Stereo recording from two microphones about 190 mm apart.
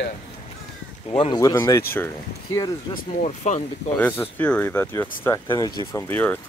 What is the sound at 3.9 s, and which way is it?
Speech, 10° left (ahead or behind).